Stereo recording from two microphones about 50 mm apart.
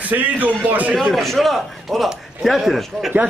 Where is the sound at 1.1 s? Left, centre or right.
Centre.